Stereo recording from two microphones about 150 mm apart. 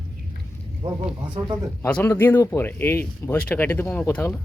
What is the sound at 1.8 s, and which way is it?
Speech, 15° left (ahead or behind).